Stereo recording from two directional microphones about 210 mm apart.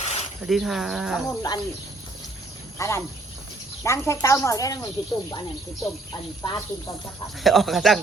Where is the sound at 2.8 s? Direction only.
15° left (ahead or behind).